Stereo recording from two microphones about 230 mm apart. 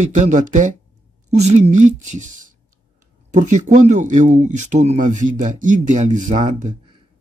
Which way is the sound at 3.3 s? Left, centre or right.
Right.